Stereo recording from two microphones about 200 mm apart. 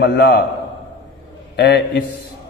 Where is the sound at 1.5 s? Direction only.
55° left (ahead or behind).